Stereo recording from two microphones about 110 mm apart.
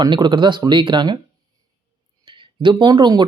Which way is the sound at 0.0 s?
45° right (ahead or behind).